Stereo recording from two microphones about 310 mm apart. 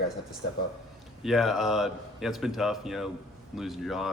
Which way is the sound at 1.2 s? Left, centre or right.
Centre.